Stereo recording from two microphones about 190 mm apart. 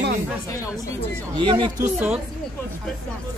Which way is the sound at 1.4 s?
25° right (ahead or behind).